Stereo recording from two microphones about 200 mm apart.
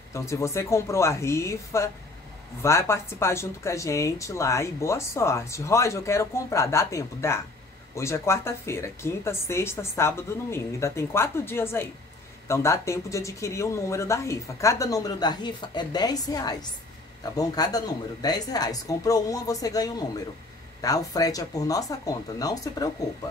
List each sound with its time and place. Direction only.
0.1 s speech: 15° left (ahead or behind)